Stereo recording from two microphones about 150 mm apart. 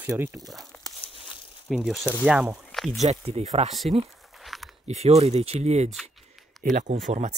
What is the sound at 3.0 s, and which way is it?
Speech, 45° right (ahead or behind).